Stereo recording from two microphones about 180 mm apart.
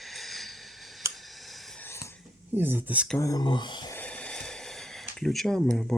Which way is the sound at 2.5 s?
10° right (ahead or behind).